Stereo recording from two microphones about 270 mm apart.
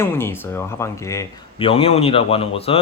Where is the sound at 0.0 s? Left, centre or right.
Centre.